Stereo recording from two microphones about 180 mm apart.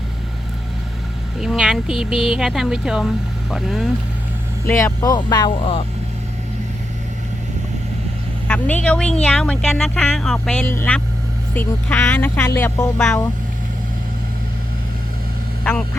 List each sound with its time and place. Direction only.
1.4 s speech: 5° right (ahead or behind)
4.6 s speech: 15° left (ahead or behind)
5.1 s music: 25° left (ahead or behind)
8.4 s speech: 10° left (ahead or behind)